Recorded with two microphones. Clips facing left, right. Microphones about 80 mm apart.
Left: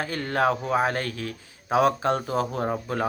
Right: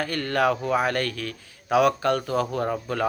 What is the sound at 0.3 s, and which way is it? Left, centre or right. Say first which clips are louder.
Speech: even; left.